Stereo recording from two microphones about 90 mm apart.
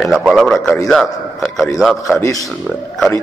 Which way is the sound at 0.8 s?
Centre (ahead or behind).